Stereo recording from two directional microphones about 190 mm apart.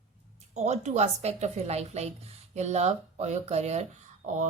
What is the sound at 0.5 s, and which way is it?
Speech, 35° right (ahead or behind).